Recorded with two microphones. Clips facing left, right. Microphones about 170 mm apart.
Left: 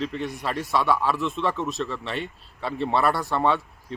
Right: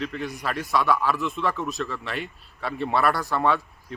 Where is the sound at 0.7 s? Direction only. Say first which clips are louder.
Even; 30° left (ahead or behind).